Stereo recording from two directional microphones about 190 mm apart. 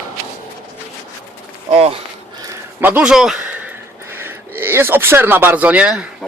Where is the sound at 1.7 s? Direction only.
35° right (ahead or behind).